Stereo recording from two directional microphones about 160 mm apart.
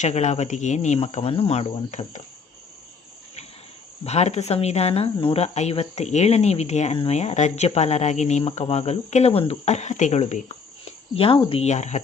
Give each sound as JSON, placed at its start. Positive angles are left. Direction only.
{"t": 0.0, "sound": "speech", "side_deg": 45}
{"t": 4.0, "sound": "speech", "side_deg": 40}